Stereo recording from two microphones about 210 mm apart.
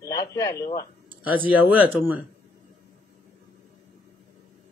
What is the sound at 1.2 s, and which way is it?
Speech, 10° right (ahead or behind).